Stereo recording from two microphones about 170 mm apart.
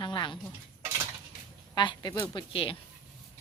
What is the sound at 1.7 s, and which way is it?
A woman's voice, 25° left (ahead or behind).